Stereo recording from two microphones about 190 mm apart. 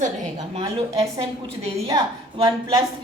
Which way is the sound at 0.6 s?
20° right (ahead or behind).